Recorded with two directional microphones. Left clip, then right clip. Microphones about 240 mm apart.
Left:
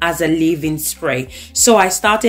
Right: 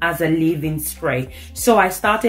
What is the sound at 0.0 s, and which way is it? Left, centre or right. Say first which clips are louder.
Speech: left 3 dB; left.